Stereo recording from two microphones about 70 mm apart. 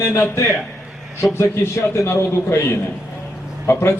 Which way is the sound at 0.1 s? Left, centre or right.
Left.